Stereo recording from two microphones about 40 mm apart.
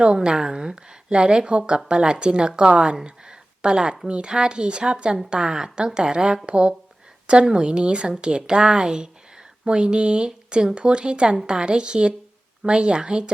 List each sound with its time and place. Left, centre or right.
0.0 s a woman's voice: right